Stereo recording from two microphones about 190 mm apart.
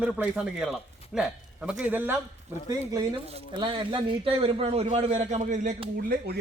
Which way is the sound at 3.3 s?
25° right (ahead or behind).